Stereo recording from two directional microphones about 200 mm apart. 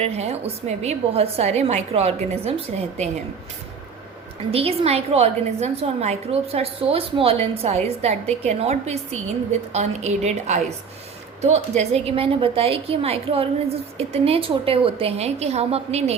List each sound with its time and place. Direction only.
0.0 s a woman's voice: 30° right (ahead or behind)
4.5 s a woman's voice: 30° right (ahead or behind)